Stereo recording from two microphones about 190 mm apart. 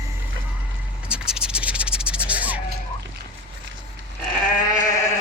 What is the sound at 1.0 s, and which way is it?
Scratch, 5° right (ahead or behind).